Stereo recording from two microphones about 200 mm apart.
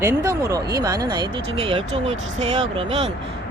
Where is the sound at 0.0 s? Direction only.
15° right (ahead or behind).